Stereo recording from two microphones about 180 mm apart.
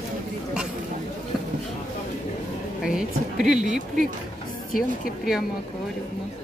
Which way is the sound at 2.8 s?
5° right (ahead or behind).